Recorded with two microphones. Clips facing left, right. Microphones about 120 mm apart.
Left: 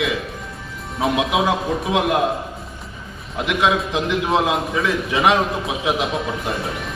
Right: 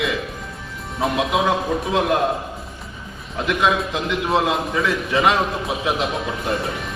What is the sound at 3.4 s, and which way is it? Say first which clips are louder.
A man's voice: even; 15° left (ahead or behind).